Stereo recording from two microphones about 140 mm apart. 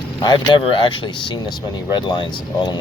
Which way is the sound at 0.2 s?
30° left (ahead or behind).